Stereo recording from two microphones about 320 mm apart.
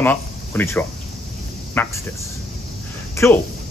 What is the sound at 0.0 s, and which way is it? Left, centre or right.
Speech, centre.